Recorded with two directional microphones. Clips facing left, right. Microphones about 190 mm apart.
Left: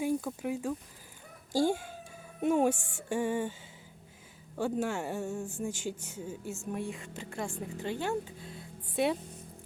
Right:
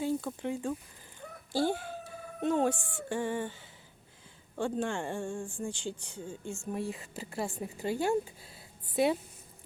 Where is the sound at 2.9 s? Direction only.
10° left (ahead or behind).